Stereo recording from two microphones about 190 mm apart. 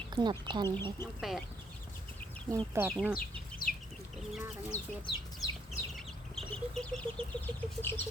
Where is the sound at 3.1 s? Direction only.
50° left (ahead or behind).